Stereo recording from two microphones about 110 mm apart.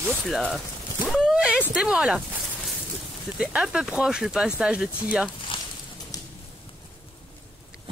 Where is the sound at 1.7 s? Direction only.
5° right (ahead or behind).